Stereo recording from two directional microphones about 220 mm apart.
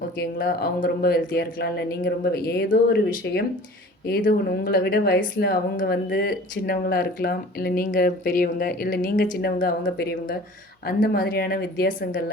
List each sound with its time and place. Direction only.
0.2 s speech: 45° left (ahead or behind)